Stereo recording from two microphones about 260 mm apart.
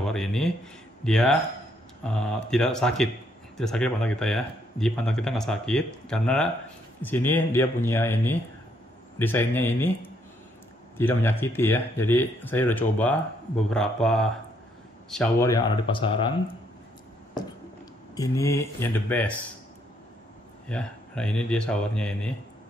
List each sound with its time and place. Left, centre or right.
0.0 s a sound: centre
1.0 s speech: centre
11.0 s speech: centre
15.5 s speech: centre
18.1 s speech: centre
20.6 s speech: centre